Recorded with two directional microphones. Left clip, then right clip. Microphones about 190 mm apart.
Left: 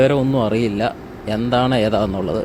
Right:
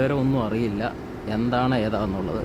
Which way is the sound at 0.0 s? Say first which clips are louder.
Left 8 dB; 15° left (ahead or behind).